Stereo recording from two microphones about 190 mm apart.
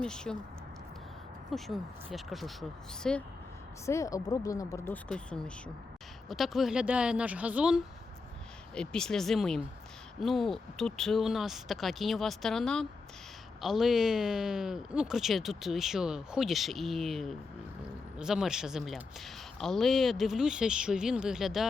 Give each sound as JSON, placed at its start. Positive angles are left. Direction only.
{"t": 0.0, "sound": "speech", "side_deg": 5}
{"t": 1.5, "sound": "speech", "side_deg": 0}
{"t": 3.8, "sound": "speech", "side_deg": 15}
{"t": 5.0, "sound": "speech", "side_deg": 5}